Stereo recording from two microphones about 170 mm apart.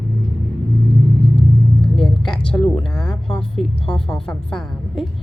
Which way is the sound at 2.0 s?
5° left (ahead or behind).